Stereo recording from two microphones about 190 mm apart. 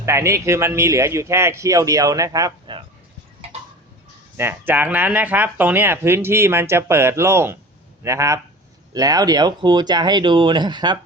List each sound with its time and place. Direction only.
0.0 s speech: 15° right (ahead or behind)
4.4 s speech: 10° right (ahead or behind)